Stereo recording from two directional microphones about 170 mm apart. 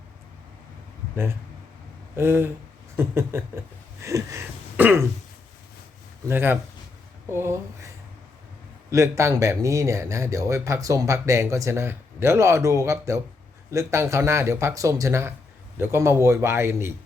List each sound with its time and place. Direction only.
1.1 s speech: 15° right (ahead or behind)
4.0 s a sound: 15° right (ahead or behind)
6.2 s speech: 10° right (ahead or behind)